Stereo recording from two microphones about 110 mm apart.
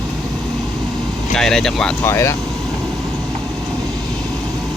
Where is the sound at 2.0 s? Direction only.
25° left (ahead or behind).